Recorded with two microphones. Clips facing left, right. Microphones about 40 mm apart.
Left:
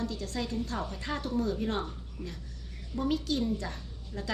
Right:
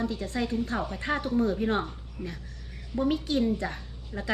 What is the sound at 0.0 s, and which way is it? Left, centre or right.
A woman's voice, right.